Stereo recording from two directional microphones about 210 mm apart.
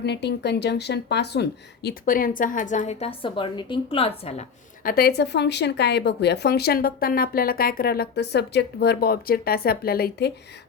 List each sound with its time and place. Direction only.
0.0 s speech: 55° left (ahead or behind); by 4.4 s 30° left (ahead or behind)
4.8 s speech: 45° left (ahead or behind)